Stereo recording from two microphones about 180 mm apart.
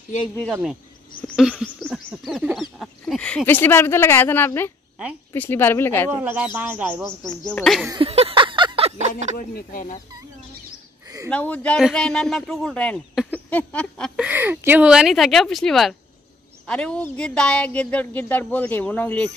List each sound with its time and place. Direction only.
0.5 s a man's voice: centre (ahead or behind)
1.9 s a sound: 5° right (ahead or behind)
2.8 s a woman's voice: centre (ahead or behind)
6.1 s speech: 10° right (ahead or behind)
7.1 s a man's voice: 5° left (ahead or behind)
7.9 s a sound: 30° right (ahead or behind)
9.6 s speech: 50° left (ahead or behind)
11.2 s a man's voice: 5° left (ahead or behind)
14.1 s a man's voice: 10° right (ahead or behind); by 19.3 s 10° left (ahead or behind)